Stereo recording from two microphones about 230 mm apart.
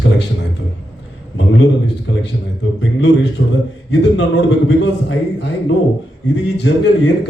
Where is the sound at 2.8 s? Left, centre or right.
Left.